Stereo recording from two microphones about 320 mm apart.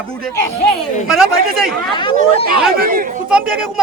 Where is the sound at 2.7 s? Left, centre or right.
Right.